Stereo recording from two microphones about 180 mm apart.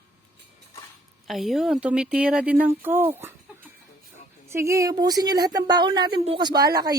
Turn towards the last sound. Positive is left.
turn(degrees=-20)  # may be behind; listen again after turning